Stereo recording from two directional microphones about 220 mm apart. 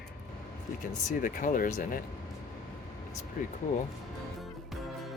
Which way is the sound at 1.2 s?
40° left (ahead or behind).